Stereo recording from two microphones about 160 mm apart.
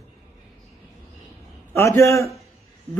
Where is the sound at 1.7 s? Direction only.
15° left (ahead or behind).